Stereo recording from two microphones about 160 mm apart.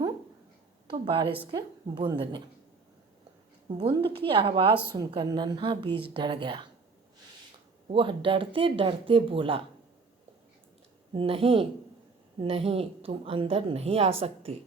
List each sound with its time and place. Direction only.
0.9 s a woman's voice: 30° right (ahead or behind)
3.7 s a woman's voice: 35° right (ahead or behind)
7.9 s a woman's voice: 30° right (ahead or behind)
11.1 s a woman's voice: 35° right (ahead or behind)